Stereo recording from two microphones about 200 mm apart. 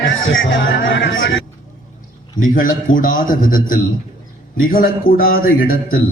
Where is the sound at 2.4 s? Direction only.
45° left (ahead or behind).